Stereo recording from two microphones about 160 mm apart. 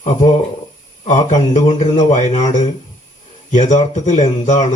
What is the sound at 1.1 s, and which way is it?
Speech, 50° left (ahead or behind).